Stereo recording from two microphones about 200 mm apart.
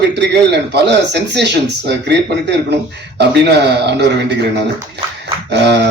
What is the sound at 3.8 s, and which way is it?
Speech, 55° right (ahead or behind).